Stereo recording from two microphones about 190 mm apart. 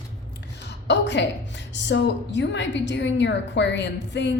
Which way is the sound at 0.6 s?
65° left (ahead or behind).